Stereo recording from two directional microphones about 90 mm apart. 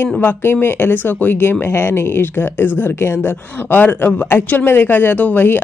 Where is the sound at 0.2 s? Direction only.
25° left (ahead or behind).